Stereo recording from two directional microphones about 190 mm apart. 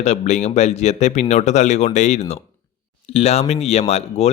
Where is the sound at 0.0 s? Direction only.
35° left (ahead or behind).